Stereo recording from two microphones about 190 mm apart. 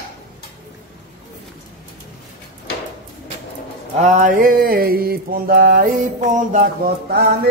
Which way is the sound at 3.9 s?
40° right (ahead or behind).